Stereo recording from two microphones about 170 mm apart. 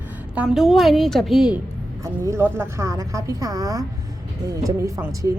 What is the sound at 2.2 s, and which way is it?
A woman's voice, 15° right (ahead or behind).